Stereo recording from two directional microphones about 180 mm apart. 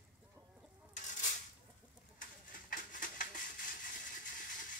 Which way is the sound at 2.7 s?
50° left (ahead or behind).